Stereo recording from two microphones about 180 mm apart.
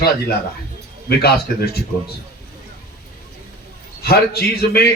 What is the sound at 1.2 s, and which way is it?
Speech, 60° left (ahead or behind).